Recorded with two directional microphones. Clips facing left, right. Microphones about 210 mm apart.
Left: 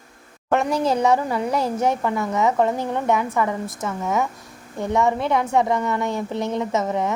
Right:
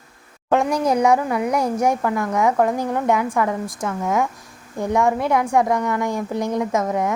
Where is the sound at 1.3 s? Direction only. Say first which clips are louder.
Right 2 dB; 10° right (ahead or behind).